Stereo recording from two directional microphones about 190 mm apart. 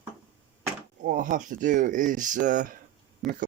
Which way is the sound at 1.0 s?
45° right (ahead or behind).